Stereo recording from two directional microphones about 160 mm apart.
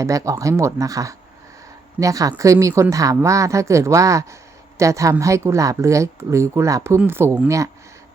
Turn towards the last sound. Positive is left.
turn(degrees=-20)  # may be behind; listen again after turning